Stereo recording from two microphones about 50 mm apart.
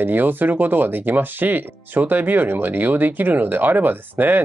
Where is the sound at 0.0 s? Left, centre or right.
Right.